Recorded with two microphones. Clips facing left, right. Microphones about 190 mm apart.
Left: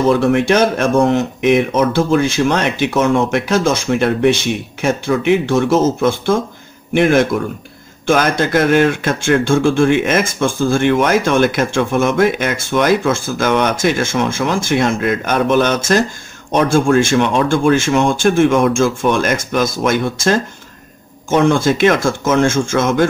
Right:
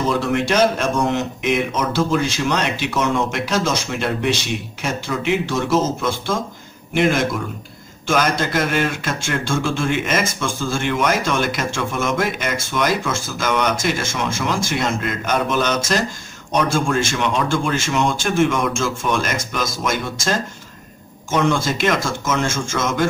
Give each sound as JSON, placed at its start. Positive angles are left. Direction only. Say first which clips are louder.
{"t": 0.2, "sound": "speech", "louder": "left 5 dB", "side_deg": 55}